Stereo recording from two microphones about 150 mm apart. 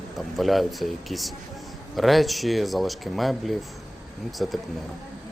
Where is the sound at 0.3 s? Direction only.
Centre (ahead or behind).